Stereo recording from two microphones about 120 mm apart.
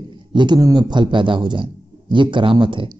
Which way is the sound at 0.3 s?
40° right (ahead or behind).